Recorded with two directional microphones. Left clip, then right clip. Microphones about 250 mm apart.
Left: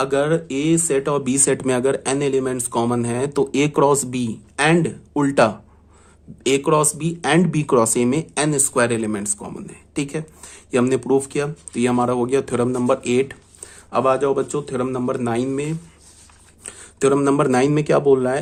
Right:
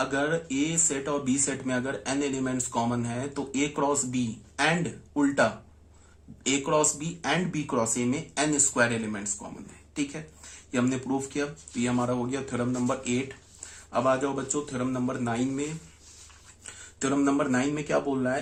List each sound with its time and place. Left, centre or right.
0.0 s speech: left
10.7 s speech: left
17.0 s speech: left